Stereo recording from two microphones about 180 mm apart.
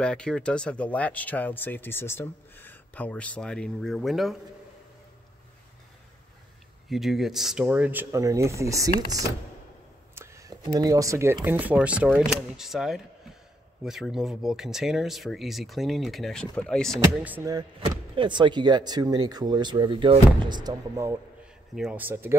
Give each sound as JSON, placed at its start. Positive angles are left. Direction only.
{"t": 0.0, "sound": "speech", "side_deg": 5}
{"t": 6.9, "sound": "speech", "side_deg": 0}
{"t": 17.5, "sound": "speech", "side_deg": -25}